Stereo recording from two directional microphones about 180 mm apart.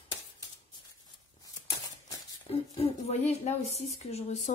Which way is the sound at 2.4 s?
35° left (ahead or behind).